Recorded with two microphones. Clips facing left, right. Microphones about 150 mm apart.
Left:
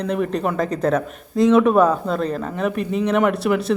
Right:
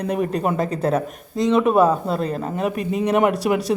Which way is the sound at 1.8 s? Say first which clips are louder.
Even; 35° right (ahead or behind).